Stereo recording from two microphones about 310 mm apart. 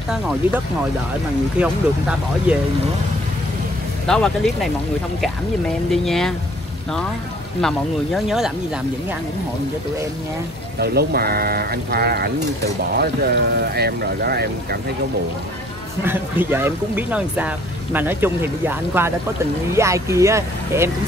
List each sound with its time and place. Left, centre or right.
1.6 s speech: centre
4.1 s speech: centre
5.9 s speech: centre
7.6 s speech: centre
10.8 s speech: right
16.0 s speech: centre